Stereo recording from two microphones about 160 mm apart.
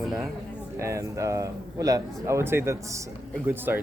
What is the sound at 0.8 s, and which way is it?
Speech, 20° right (ahead or behind).